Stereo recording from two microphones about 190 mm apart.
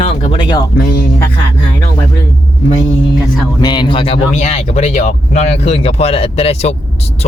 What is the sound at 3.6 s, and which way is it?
Speech, 25° left (ahead or behind).